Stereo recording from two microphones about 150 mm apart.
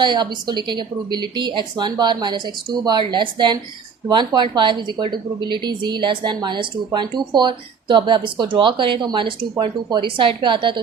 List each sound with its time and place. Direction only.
0.0 s a woman's voice: 30° right (ahead or behind)